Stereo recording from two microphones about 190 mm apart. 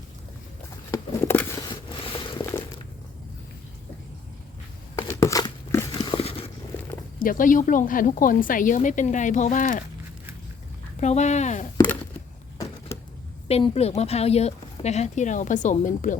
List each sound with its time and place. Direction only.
0.9 s a sound: 15° left (ahead or behind)
1.6 s stir: 25° left (ahead or behind)
2.3 s a sound: 20° left (ahead or behind)
5.0 s crumpling: 15° left (ahead or behind)
7.2 s a woman's voice: 45° left (ahead or behind)
11.0 s speech: 35° left (ahead or behind)
13.5 s speech: 35° left (ahead or behind)